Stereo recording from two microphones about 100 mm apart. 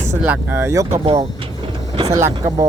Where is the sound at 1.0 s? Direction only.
80° right.